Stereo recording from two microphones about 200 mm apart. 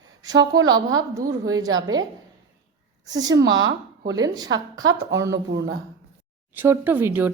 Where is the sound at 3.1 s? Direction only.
20° right (ahead or behind).